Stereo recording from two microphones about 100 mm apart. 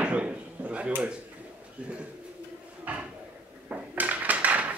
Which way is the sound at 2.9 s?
15° right (ahead or behind).